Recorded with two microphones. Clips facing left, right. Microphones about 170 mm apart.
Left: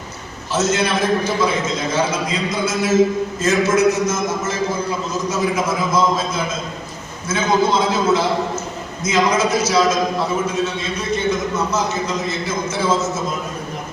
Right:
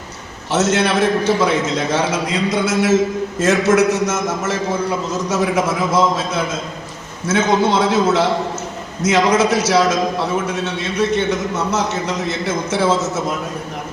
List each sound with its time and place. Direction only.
0.5 s a man's voice: 75° right (ahead or behind)